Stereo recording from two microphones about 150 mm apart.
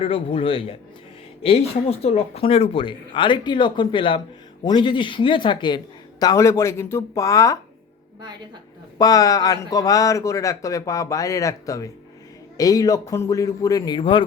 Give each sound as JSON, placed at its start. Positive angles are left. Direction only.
{"t": 0.0, "sound": "speech", "side_deg": 40}
{"t": 9.0, "sound": "speech", "side_deg": 25}